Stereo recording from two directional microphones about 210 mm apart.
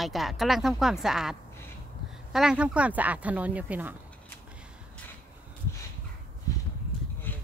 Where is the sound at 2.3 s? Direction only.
5° right (ahead or behind).